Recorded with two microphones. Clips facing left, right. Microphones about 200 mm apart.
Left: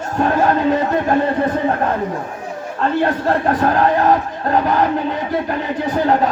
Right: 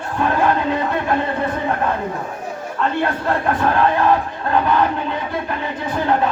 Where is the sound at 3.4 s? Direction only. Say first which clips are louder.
Left 1 dB; 40° left (ahead or behind).